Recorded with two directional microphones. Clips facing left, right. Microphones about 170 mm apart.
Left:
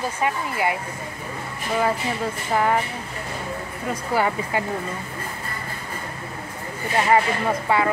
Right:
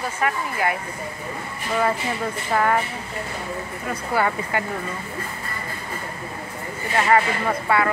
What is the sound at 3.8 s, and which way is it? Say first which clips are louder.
Speech: left 1 dB; 15° left (ahead or behind).